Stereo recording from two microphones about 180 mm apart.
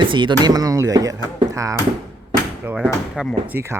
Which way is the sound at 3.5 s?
15° right (ahead or behind).